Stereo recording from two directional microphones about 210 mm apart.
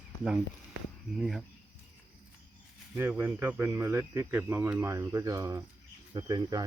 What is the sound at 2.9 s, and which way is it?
Speech, 10° right (ahead or behind).